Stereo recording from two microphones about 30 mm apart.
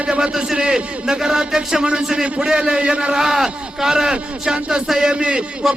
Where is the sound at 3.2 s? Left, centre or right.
Centre.